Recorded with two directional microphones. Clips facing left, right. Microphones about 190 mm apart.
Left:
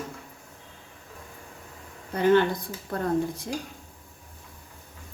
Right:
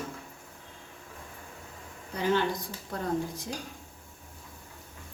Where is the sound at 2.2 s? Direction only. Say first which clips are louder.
Left 7 dB; 55° left (ahead or behind).